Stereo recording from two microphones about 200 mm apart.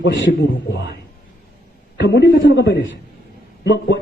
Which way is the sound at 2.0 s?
60° left (ahead or behind).